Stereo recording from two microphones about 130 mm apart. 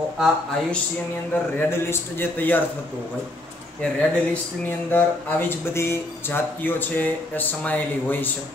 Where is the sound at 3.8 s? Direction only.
10° left (ahead or behind).